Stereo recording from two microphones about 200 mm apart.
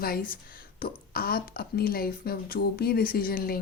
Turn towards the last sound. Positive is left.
turn(degrees=45)  # may be behind; listen again after turning